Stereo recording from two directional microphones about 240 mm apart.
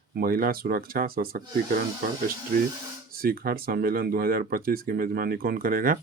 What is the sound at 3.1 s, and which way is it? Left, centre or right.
Speech, right.